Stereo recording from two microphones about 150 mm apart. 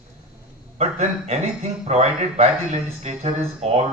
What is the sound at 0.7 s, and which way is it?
Speech, 45° right (ahead or behind).